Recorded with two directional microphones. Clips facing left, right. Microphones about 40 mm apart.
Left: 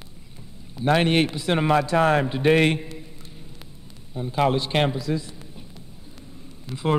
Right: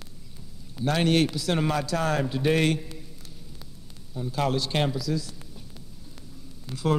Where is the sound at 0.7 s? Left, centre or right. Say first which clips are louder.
Left 4 dB; left.